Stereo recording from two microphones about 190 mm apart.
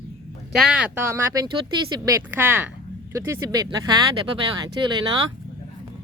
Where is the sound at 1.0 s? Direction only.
15° right (ahead or behind).